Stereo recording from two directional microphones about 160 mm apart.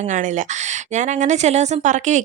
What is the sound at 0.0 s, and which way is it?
A woman's voice, 50° right (ahead or behind).